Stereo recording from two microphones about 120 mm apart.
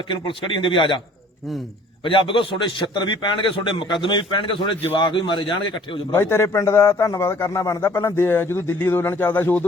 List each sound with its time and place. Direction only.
0.1 s a man's voice: 45° left (ahead or behind)
2.0 s a man's voice: 45° left (ahead or behind)
6.1 s a man's voice: 20° left (ahead or behind)